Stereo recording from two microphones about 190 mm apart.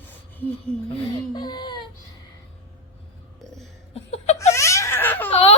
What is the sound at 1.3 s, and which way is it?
Speech, 20° left (ahead or behind).